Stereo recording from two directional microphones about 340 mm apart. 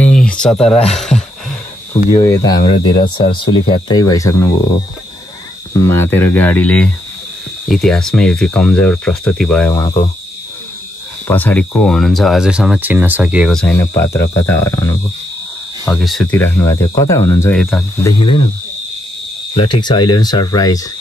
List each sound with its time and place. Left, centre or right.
0.0 s a sound: centre
2.0 s speech: left
5.7 s speech: centre
11.2 s speech: centre
18.2 s speech: centre
19.7 s speech: centre